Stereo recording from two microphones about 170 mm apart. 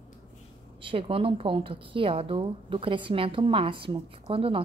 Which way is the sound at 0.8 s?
35° right (ahead or behind).